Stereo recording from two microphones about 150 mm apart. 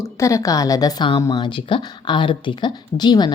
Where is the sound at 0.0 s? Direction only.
20° left (ahead or behind).